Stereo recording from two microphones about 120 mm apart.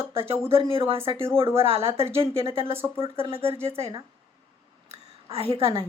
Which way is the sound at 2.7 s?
20° right (ahead or behind).